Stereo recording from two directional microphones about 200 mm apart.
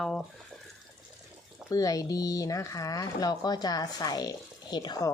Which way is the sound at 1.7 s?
15° left (ahead or behind).